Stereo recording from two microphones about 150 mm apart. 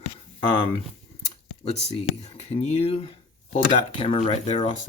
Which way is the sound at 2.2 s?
45° left (ahead or behind).